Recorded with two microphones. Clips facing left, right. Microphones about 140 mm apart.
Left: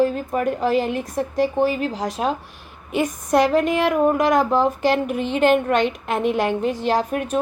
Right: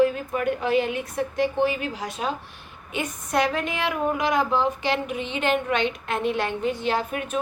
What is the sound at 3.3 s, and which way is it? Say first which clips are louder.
A woman's voice: left 7 dB; 45° left (ahead or behind).